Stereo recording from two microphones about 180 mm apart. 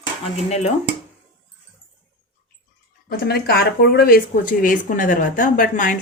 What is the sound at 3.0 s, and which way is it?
Speech, 60° left (ahead or behind).